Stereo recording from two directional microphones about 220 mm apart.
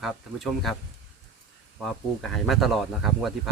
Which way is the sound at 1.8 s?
Centre (ahead or behind).